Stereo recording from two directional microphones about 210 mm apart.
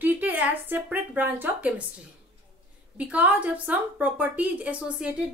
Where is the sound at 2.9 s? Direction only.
5° right (ahead or behind).